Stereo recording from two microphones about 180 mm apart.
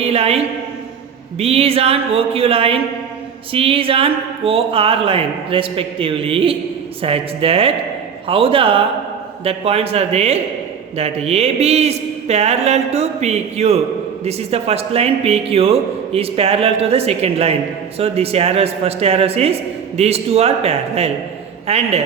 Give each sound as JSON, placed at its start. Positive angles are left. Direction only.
{"t": 0.0, "sound": "a man's voice", "side_deg": -35}